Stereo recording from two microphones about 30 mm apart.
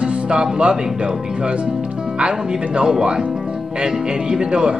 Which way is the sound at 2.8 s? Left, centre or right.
Right.